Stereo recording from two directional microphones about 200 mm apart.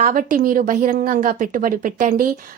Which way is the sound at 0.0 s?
45° right (ahead or behind).